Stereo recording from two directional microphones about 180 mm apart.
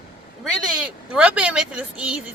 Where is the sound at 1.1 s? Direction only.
5° right (ahead or behind).